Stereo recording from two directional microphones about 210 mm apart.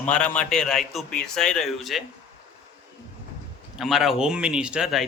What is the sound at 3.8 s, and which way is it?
A man's voice, centre (ahead or behind).